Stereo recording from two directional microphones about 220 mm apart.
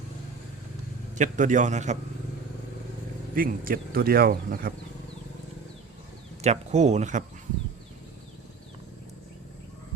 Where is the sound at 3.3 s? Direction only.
40° right (ahead or behind).